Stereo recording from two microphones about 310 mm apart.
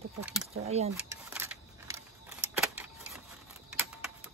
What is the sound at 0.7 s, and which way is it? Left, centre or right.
Speech, centre.